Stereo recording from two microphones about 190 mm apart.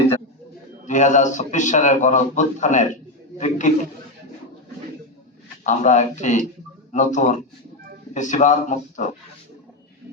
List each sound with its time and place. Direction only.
0.9 s a man's voice: 40° left (ahead or behind)
5.6 s a man's voice: 40° left (ahead or behind)